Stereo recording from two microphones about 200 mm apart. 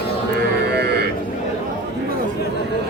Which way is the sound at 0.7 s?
55° right (ahead or behind).